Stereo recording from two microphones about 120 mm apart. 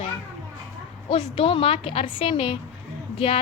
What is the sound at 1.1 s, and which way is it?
A woman's voice, 50° left (ahead or behind).